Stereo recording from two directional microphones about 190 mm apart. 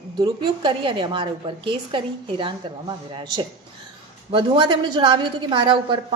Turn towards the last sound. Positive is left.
turn(degrees=-25)  # may be behind; listen again after turning